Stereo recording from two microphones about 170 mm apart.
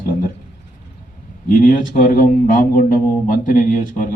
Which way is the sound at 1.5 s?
55° left (ahead or behind).